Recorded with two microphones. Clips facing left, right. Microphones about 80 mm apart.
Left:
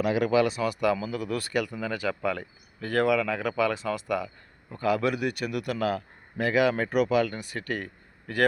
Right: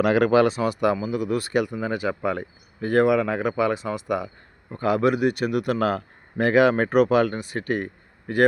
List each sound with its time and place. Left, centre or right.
0.0 s speech: right; by 4.3 s centre
4.7 s a man's voice: right
7.3 s speech: right